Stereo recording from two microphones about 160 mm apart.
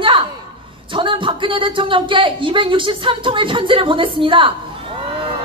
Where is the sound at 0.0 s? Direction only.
35° right (ahead or behind).